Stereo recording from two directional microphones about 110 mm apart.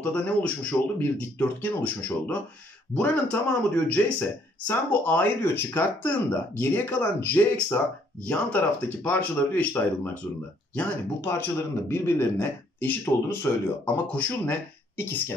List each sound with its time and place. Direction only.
0.0 s speech: 10° left (ahead or behind)